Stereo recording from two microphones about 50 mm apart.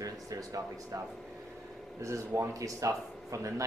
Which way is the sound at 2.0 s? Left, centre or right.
Right.